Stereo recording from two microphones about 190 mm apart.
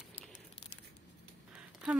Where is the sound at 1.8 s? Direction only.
5° right (ahead or behind).